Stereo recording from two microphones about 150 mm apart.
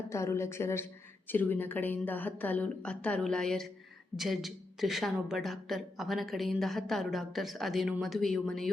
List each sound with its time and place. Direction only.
0.1 s a woman's voice: 20° left (ahead or behind); by 8.7 s centre (ahead or behind)